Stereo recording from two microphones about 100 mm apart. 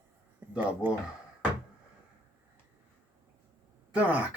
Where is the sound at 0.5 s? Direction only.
15° right (ahead or behind).